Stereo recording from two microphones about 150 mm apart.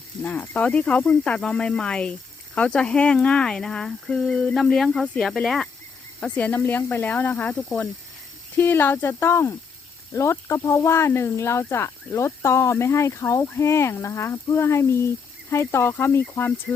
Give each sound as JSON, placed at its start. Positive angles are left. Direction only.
{"t": 0.2, "sound": "speech", "side_deg": 10}
{"t": 16.7, "sound": "speech", "side_deg": 5}